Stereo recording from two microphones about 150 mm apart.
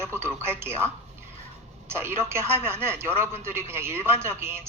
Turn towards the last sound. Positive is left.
turn(degrees=-15)  # may be behind; listen again after turning